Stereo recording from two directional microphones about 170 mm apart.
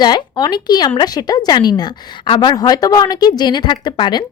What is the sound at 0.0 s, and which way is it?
Speech, 25° left (ahead or behind).